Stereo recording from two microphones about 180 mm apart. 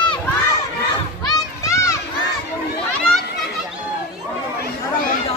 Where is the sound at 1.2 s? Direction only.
15° left (ahead or behind).